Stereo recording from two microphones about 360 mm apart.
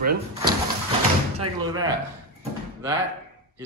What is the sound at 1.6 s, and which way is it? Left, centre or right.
Speech, centre.